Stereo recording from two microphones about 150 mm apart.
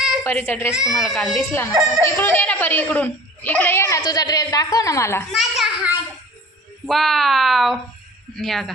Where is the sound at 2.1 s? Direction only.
15° left (ahead or behind).